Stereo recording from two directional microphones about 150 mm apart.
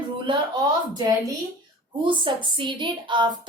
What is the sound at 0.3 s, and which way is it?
A woman's voice, 30° right (ahead or behind).